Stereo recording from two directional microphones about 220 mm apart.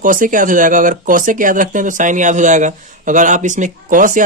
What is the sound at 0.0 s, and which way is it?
Speech, 35° right (ahead or behind).